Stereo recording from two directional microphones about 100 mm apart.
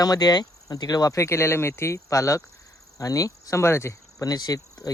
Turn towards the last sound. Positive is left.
turn(degrees=40)  # may be behind; listen again after turning